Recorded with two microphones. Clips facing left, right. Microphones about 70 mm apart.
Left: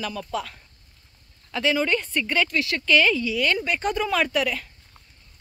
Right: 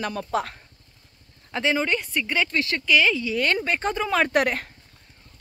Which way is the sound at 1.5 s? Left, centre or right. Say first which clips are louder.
Left 1 dB; right.